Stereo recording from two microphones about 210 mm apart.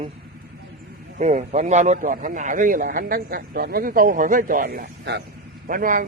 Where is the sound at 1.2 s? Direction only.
35° right (ahead or behind).